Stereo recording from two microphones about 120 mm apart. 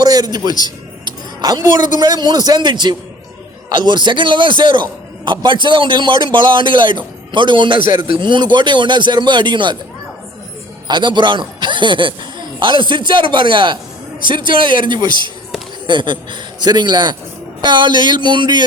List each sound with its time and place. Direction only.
0.0 s a man's voice: 35° right (ahead or behind)
0.6 s a sound: 35° right (ahead or behind)
2.0 s a man's voice: 35° right (ahead or behind)
10.8 s a man's voice: 40° right (ahead or behind)